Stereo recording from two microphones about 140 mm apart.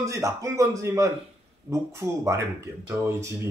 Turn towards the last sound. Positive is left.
turn(degrees=-20)  # may be behind; listen again after turning